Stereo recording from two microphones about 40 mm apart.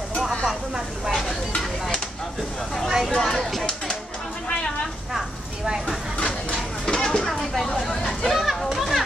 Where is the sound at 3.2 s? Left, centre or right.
Centre.